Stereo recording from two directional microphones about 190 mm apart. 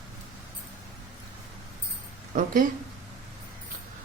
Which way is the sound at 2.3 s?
40° right (ahead or behind).